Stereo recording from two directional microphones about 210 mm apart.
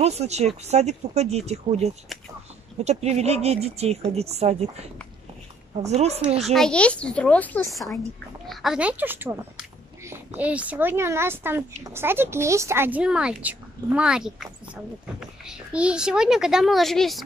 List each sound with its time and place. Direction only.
0.0 s speech: 30° right (ahead or behind)
5.9 s speech: 30° right (ahead or behind)
6.4 s a woman's voice: centre (ahead or behind)